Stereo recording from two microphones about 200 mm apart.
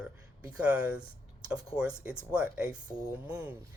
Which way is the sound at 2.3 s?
5° right (ahead or behind).